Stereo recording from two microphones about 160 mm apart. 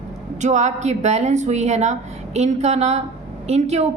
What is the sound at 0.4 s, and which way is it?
A woman's voice, 45° right (ahead or behind).